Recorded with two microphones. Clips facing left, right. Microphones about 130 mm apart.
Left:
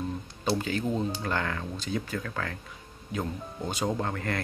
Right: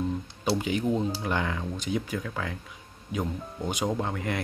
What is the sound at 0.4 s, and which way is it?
Speech, 15° right (ahead or behind).